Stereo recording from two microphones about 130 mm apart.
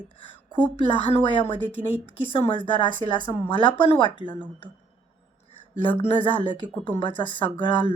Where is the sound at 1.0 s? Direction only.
40° left (ahead or behind).